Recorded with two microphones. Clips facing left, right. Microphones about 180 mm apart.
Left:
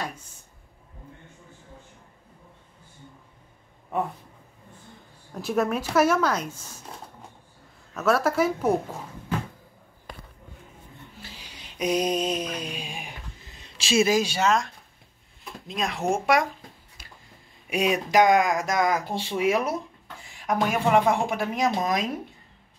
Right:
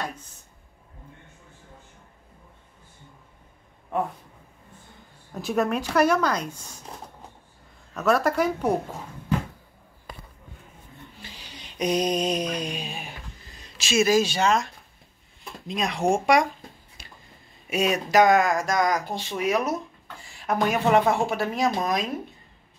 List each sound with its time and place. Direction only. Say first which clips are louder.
5.3 s speech: even; centre (ahead or behind)
7.9 s speech: right 1 dB; centre (ahead or behind)
11.2 s a sound: right 1 dB; 10° left (ahead or behind)
13.5 s a sound: left 2 dB; 25° left (ahead or behind)
14.1 s speech: right 1 dB; 10° left (ahead or behind)
17.6 s speech: even; 15° left (ahead or behind)
20.3 s speech: right 1 dB; 10° left (ahead or behind)